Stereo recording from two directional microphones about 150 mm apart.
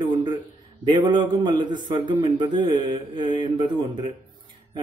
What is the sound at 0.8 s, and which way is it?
Speech, 30° right (ahead or behind).